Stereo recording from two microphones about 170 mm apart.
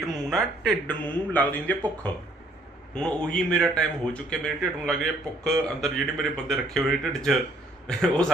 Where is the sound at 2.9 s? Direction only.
5° left (ahead or behind).